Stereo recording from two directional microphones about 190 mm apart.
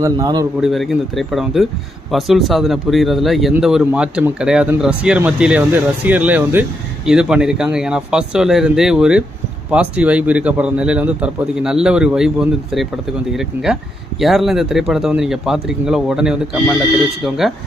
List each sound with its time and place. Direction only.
0.0 s a man's voice: 20° right (ahead or behind)
0.6 s speech: centre (ahead or behind)
14.2 s speech: centre (ahead or behind)